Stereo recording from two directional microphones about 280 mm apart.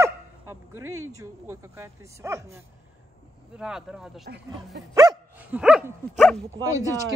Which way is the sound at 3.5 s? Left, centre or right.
Centre.